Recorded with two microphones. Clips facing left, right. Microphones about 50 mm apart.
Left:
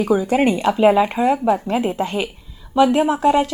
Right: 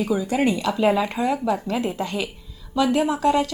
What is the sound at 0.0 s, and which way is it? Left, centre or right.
A woman's voice, left.